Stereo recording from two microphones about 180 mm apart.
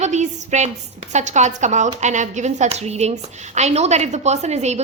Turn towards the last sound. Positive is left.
turn(degrees=-40)  # may be behind; listen again after turning